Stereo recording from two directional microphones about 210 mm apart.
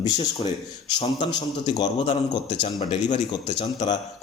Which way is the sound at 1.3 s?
20° left (ahead or behind).